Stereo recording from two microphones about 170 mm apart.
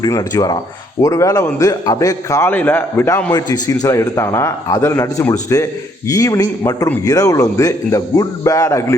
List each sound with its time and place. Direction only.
0.0 s a man's voice: 20° left (ahead or behind)
3.3 s a man's voice: 25° left (ahead or behind)